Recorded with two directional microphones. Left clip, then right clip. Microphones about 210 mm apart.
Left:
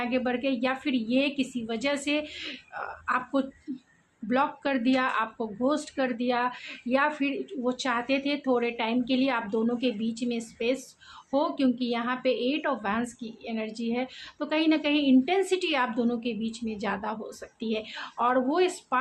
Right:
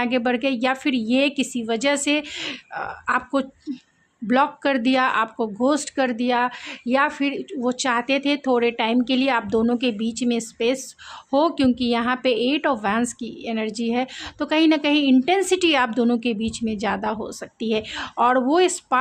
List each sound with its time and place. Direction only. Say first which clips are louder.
0.0 s a woman's voice: right 7 dB; 50° right (ahead or behind)